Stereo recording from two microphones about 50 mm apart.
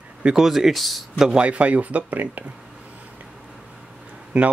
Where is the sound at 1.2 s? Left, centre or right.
Right.